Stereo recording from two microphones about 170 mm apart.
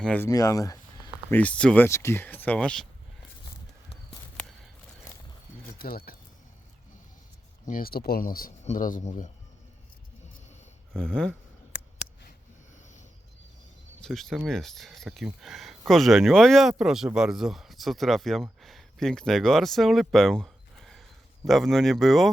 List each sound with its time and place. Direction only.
0.0 s speech: 5° left (ahead or behind)
0.3 s a sound: 20° left (ahead or behind)
1.4 s speech: 5° left (ahead or behind)
5.8 s speech: 60° left (ahead or behind)
7.7 s speech: 60° left (ahead or behind)
10.9 s speech: 5° left (ahead or behind)
14.0 s speech: centre (ahead or behind)